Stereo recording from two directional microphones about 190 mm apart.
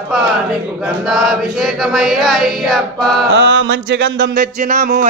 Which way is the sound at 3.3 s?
80° right.